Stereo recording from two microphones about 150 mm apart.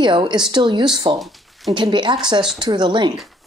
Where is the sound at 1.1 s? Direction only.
Centre (ahead or behind).